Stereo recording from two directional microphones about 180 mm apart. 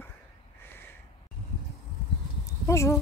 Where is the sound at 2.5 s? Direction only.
15° left (ahead or behind).